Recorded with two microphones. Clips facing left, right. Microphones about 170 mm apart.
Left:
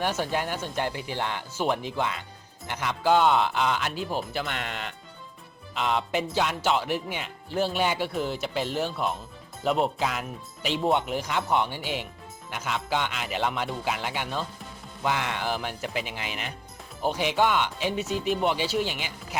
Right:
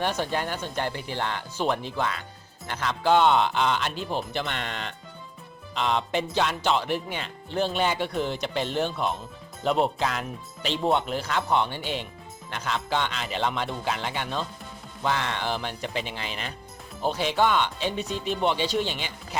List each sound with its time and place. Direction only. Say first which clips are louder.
0.0 s speech: even; 10° left (ahead or behind)